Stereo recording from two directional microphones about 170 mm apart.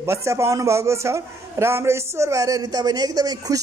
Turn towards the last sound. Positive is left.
turn(degrees=-20)  # may be behind; listen again after turning